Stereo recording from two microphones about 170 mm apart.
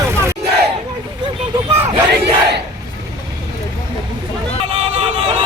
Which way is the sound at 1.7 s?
35° right (ahead or behind).